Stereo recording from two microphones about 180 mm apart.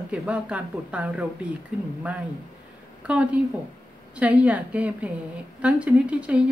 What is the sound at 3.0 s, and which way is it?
A woman's voice, 5° right (ahead or behind).